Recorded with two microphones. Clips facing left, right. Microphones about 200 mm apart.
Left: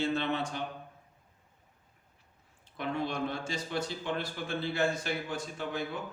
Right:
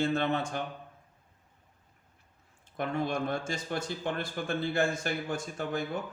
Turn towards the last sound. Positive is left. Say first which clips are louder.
# right 2 dB
turn(degrees=-50)  # may be behind; listen again after turning